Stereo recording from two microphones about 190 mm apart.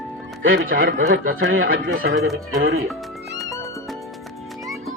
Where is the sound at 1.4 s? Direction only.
90° right.